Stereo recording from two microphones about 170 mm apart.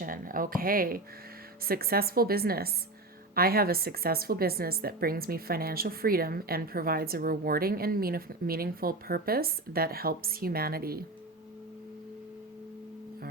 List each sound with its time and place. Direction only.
0.0 s speech: 55° right (ahead or behind)